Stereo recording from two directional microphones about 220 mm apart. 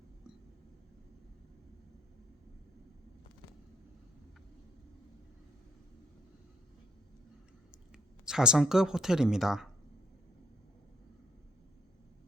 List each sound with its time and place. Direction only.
7.9 s speech: 5° right (ahead or behind)